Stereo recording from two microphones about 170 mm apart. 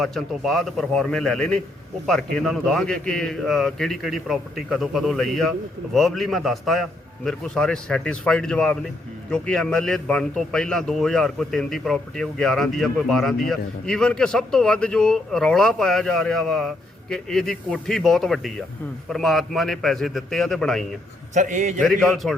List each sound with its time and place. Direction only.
0.0 s speech: centre (ahead or behind)
21.3 s a man's voice: 45° right (ahead or behind)
21.8 s speech: 5° left (ahead or behind)